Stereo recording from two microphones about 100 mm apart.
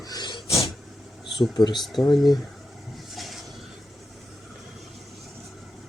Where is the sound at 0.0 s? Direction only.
45° left (ahead or behind).